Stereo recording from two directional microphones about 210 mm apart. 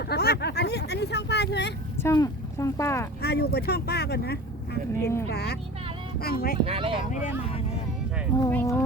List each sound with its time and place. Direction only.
0.0 s vehicle: 50° left (ahead or behind)
2.0 s speech: 15° left (ahead or behind)
3.2 s speech: 50° left (ahead or behind)
4.9 s speech: 10° left (ahead or behind)
5.3 s speech: 50° left (ahead or behind)
6.7 s speech: 25° right (ahead or behind)
8.4 s speech: 10° left (ahead or behind)